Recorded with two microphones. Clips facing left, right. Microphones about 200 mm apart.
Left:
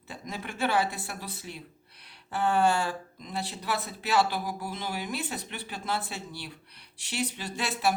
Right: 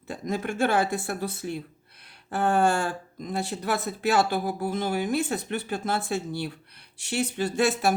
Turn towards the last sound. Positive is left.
turn(degrees=-50)  # may be behind; listen again after turning